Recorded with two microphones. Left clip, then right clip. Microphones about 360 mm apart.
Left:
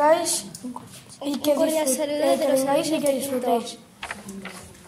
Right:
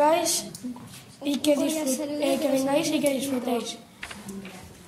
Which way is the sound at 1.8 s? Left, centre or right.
Left.